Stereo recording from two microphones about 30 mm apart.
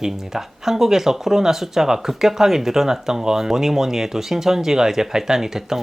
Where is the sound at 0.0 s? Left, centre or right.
Centre.